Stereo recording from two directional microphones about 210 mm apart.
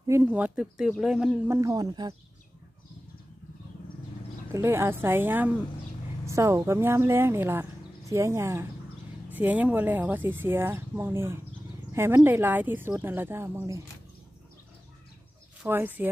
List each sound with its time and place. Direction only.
0.0 s speech: 10° right (ahead or behind)
1.6 s speech: 15° right (ahead or behind)
4.5 s speech: 10° right (ahead or behind)
15.6 s speech: 10° right (ahead or behind)